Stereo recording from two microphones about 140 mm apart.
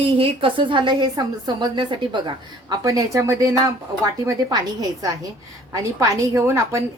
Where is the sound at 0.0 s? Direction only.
40° right (ahead or behind); by 6.8 s 20° right (ahead or behind).